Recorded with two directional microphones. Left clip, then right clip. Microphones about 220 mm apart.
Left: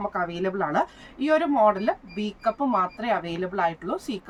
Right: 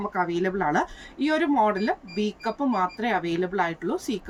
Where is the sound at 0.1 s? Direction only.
10° left (ahead or behind).